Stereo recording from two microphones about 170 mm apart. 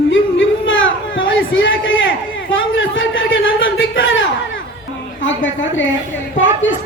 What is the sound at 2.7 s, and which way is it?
A man's voice, 90° left.